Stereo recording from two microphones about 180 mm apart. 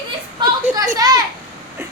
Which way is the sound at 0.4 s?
25° right (ahead or behind).